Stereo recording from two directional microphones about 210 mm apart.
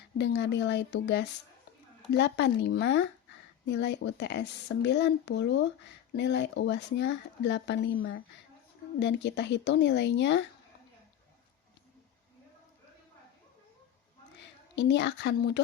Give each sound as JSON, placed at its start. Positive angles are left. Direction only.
{"t": 0.2, "sound": "speech", "side_deg": 55}
{"t": 14.8, "sound": "speech", "side_deg": 55}